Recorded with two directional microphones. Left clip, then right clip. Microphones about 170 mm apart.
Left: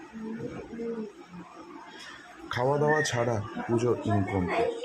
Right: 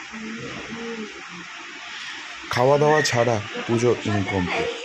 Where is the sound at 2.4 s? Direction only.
25° right (ahead or behind).